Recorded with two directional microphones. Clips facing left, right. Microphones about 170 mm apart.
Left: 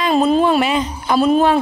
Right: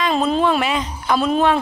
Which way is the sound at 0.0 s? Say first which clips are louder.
Left 4 dB; 5° left (ahead or behind).